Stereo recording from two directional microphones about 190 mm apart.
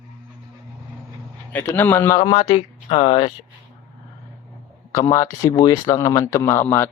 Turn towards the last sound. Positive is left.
turn(degrees=10)  # may be behind; listen again after turning